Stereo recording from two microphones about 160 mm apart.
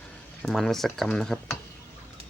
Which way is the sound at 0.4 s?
5° left (ahead or behind).